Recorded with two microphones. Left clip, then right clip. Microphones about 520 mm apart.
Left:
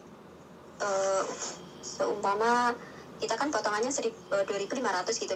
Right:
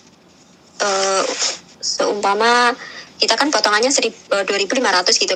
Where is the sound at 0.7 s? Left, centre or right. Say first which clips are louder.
Right 11 dB; right.